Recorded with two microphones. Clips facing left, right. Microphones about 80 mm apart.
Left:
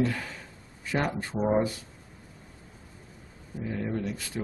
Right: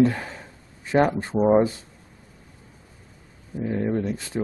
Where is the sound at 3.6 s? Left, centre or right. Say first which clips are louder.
Right 7 dB; right.